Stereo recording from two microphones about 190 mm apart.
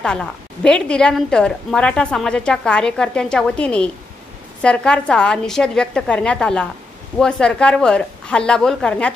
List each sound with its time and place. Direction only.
0.0 s a woman's voice: 5° left (ahead or behind)